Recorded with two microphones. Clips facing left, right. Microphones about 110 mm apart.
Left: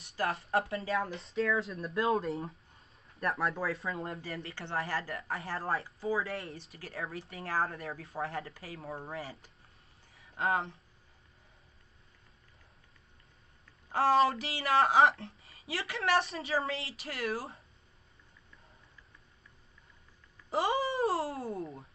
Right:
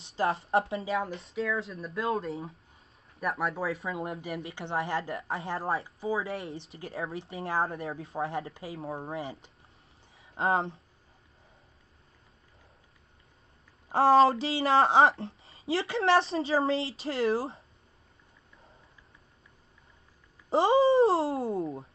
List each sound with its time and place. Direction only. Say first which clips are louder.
0.0 s a woman's voice: right 5 dB; 25° right (ahead or behind)
0.8 s speech: right 2 dB; 5° right (ahead or behind)
4.0 s a woman's voice: right 4 dB; 25° right (ahead or behind)
13.9 s a woman's voice: right 6 dB; 30° right (ahead or behind)
20.4 s a woman's voice: right 8 dB; 30° right (ahead or behind)